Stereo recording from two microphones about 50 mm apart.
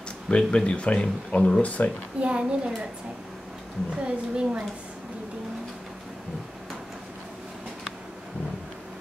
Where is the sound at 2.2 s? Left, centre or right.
Right.